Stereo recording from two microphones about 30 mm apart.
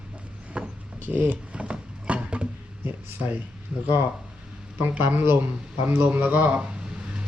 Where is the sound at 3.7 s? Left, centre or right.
Right.